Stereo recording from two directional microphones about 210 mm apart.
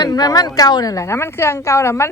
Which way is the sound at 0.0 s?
20° left (ahead or behind).